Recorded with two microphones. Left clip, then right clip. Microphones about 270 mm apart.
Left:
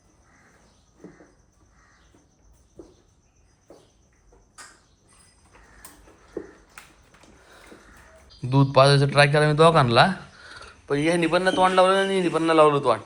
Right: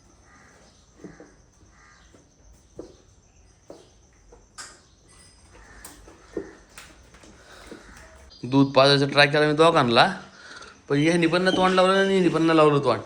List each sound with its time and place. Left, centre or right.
8.4 s a man's voice: centre